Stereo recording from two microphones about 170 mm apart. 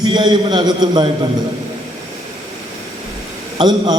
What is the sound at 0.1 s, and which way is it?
Speech, 25° right (ahead or behind).